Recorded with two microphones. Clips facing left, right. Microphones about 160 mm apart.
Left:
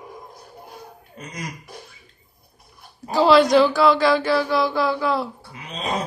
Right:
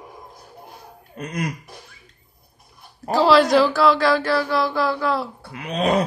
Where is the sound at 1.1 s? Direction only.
60° right (ahead or behind).